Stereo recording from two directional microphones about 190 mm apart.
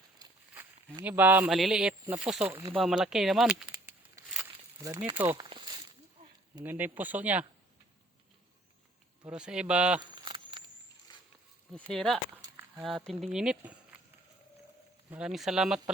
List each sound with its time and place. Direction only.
0.2 s speech: 10° right (ahead or behind)
2.5 s speech: 15° right (ahead or behind)
2.7 s speech: centre (ahead or behind)
3.7 s crumpling: 15° right (ahead or behind)
5.1 s speech: 10° right (ahead or behind)
5.4 s walk: 20° right (ahead or behind)
6.7 s speech: 10° right (ahead or behind)
9.2 s speech: 5° right (ahead or behind)
10.2 s a sound: 25° right (ahead or behind)
11.1 s a sound: 20° left (ahead or behind)
11.9 s speech: centre (ahead or behind)
12.4 s a sound: 10° right (ahead or behind)
13.1 s speech: centre (ahead or behind)
15.1 s speech: 5° right (ahead or behind)